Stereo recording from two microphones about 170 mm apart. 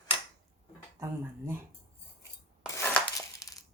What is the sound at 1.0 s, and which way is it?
Speech, 15° right (ahead or behind).